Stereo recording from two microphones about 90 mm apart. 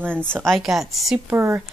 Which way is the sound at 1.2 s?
30° right (ahead or behind).